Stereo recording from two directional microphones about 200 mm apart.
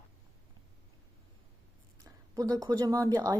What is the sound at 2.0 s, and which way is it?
Speech, 15° right (ahead or behind).